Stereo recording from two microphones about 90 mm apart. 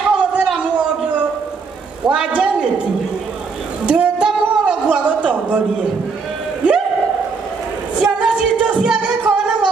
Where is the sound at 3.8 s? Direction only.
10° right (ahead or behind).